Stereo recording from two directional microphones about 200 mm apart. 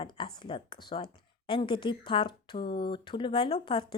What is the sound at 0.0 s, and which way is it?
Speech, 25° left (ahead or behind).